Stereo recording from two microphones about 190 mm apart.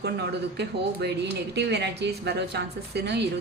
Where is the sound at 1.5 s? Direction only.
60° right (ahead or behind).